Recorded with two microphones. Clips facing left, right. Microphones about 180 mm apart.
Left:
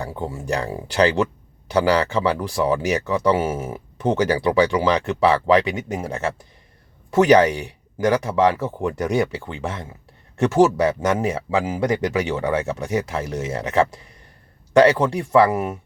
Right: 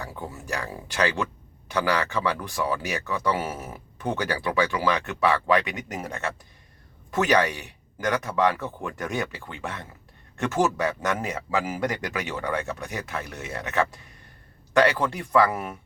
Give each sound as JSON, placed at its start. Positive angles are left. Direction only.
{"t": 0.0, "sound": "speech", "side_deg": 30}
{"t": 14.8, "sound": "speech", "side_deg": 25}